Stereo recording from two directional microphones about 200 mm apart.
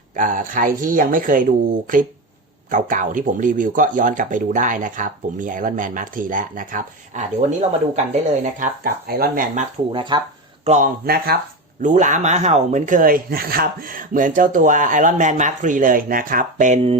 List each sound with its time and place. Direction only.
0.2 s speech: 40° right (ahead or behind)
9.9 s speech: 25° right (ahead or behind)
10.7 s speech: 40° right (ahead or behind)
11.8 s speech: 40° right (ahead or behind)